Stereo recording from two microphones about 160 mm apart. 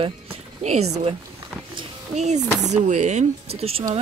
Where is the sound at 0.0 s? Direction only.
40° right (ahead or behind).